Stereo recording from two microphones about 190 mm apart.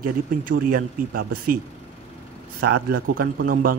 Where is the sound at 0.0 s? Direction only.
45° right (ahead or behind).